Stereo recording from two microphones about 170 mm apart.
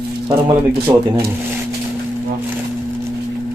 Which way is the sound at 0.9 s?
20° right (ahead or behind).